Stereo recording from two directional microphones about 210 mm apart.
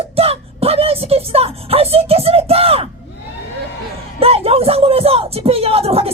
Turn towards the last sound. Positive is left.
turn(degrees=-30)  # may be behind; listen again after turning